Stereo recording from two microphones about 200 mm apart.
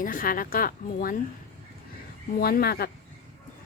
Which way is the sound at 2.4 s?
50° left (ahead or behind).